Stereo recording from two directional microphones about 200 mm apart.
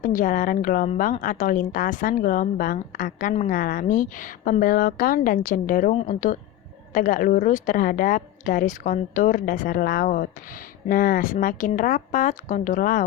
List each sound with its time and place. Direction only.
0.0 s a woman's voice: 40° left (ahead or behind)